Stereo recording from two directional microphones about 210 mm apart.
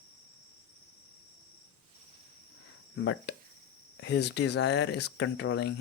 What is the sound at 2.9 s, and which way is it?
Speech, 60° left (ahead or behind).